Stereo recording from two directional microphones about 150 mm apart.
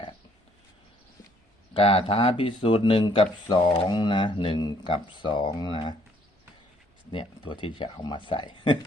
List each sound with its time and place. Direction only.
1.7 s speech: 40° left (ahead or behind)
7.1 s speech: 35° left (ahead or behind)